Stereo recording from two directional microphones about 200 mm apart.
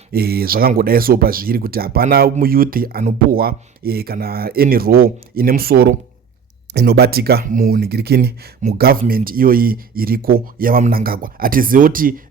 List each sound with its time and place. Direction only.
0.1 s speech: 50° right (ahead or behind)